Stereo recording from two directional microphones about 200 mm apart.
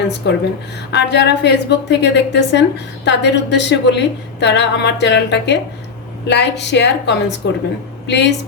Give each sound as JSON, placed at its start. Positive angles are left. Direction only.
{"t": 0.2, "sound": "a woman's voice", "side_deg": 55}